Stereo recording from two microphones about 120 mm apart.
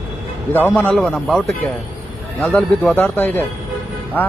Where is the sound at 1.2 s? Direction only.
5° left (ahead or behind).